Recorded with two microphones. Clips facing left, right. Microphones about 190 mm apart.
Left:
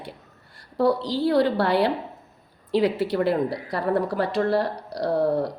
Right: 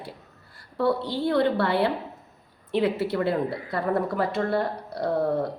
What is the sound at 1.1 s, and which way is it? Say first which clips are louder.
A woman's voice: left 2 dB; 30° left (ahead or behind).